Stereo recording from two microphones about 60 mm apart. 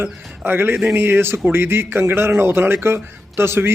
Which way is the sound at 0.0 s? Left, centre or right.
Right.